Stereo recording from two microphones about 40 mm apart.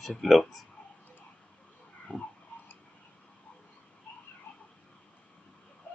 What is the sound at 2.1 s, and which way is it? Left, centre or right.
Tick-tock, left.